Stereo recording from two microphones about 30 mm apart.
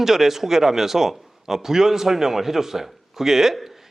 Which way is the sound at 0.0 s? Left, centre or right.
Centre.